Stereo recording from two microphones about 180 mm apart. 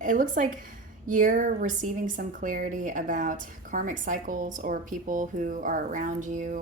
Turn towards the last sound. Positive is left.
turn(degrees=-45)  # may be behind; listen again after turning